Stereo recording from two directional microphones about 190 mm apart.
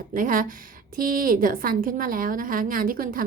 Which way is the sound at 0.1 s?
45° right (ahead or behind).